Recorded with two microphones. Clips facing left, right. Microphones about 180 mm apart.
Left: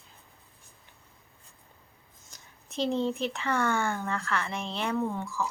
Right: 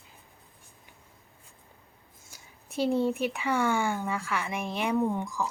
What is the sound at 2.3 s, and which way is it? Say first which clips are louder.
A woman's voice: right 2 dB; 10° right (ahead or behind).